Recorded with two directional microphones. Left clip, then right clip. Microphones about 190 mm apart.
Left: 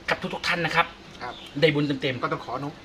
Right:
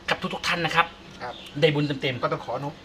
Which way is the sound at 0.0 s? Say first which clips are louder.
Even; 15° right (ahead or behind).